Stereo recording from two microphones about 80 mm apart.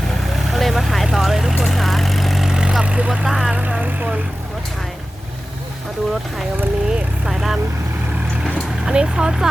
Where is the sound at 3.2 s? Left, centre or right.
Centre.